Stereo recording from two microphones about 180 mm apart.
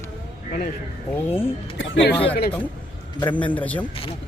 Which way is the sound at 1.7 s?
90° left.